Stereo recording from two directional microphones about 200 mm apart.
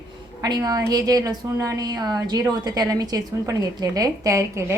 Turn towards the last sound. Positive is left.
turn(degrees=-15)  # may be behind; listen again after turning